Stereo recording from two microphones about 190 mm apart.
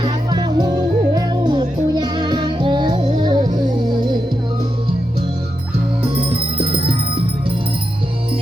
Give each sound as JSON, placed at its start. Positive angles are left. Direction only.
{"t": 0.0, "sound": "music", "side_deg": -20}
{"t": 6.0, "sound": "music", "side_deg": -30}